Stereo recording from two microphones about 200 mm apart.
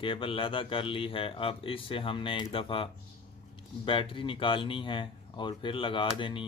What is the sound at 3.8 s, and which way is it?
Speech, 25° left (ahead or behind).